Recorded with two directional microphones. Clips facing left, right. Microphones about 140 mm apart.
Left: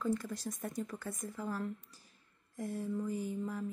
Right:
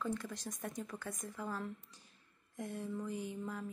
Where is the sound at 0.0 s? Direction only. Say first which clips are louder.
Left 4 dB; 10° left (ahead or behind).